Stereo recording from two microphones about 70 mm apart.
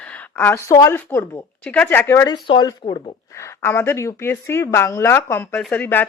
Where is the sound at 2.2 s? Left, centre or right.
Left.